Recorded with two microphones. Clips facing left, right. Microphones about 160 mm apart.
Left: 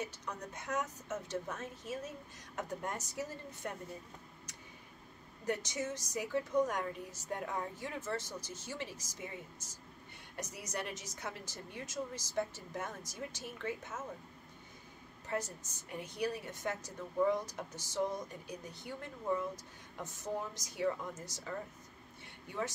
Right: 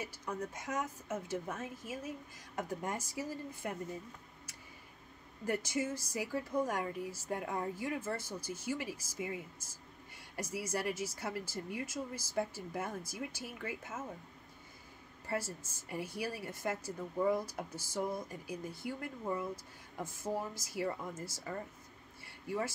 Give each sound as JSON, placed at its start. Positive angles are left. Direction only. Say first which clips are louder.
{"t": 0.0, "sound": "speech", "louder": "right 2 dB", "side_deg": -5}
{"t": 5.5, "sound": "speech", "louder": "right 2 dB", "side_deg": -10}
{"t": 15.2, "sound": "speech", "louder": "even", "side_deg": -5}
{"t": 22.2, "sound": "a sound", "louder": "right 3 dB", "side_deg": -5}